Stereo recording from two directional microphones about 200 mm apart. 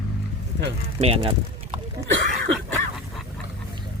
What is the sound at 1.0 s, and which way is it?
Speech, 30° right (ahead or behind).